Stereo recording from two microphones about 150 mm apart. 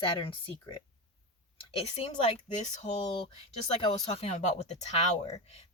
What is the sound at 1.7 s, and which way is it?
Speech, 40° left (ahead or behind).